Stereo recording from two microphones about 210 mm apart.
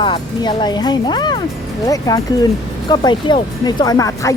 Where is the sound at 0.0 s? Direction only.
20° left (ahead or behind).